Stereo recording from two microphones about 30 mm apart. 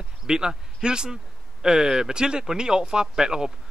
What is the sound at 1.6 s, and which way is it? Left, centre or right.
Speech, centre.